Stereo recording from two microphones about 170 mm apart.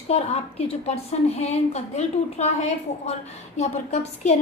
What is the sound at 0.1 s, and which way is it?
A woman's voice, 40° left (ahead or behind).